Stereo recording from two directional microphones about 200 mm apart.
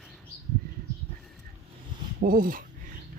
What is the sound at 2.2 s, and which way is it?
Speech, 45° right (ahead or behind).